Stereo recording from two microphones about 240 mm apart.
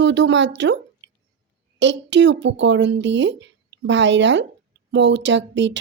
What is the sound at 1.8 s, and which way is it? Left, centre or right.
Speech, right.